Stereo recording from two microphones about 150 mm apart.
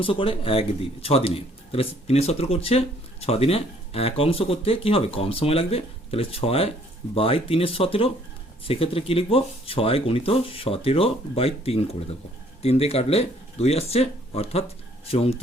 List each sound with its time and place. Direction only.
0.0 s speech: 35° left (ahead or behind)